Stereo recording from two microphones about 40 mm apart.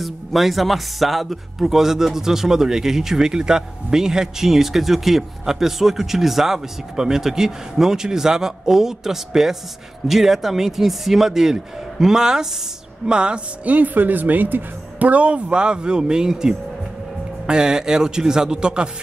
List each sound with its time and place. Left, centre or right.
0.0 s speech: centre; by 13.4 s right
13.7 s speech: right
15.0 s speech: right